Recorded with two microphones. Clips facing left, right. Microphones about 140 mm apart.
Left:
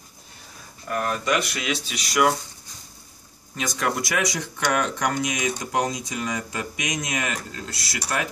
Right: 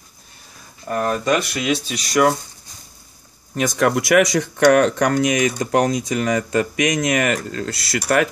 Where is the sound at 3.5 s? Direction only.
55° right (ahead or behind); by 8.0 s 70° right (ahead or behind).